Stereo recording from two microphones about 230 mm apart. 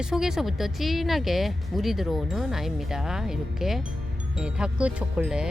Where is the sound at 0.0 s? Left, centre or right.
Centre.